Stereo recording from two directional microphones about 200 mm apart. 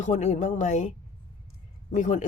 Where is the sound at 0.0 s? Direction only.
35° left (ahead or behind).